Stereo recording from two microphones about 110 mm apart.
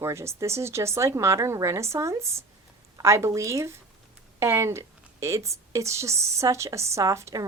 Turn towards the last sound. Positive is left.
turn(degrees=-30)  # may be behind; listen again after turning